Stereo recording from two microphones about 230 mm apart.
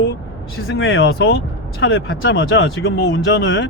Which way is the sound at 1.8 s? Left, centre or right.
Left.